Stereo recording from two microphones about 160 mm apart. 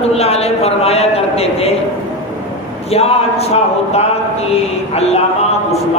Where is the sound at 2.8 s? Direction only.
40° left (ahead or behind).